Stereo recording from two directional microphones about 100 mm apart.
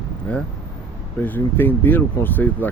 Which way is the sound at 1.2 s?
20° left (ahead or behind).